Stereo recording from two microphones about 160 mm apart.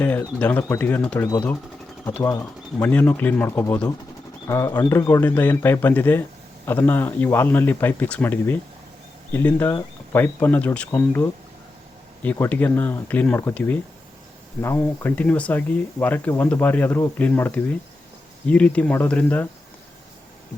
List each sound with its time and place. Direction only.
0.0 s speech: 10° left (ahead or behind)
1.3 s speech: 25° left (ahead or behind)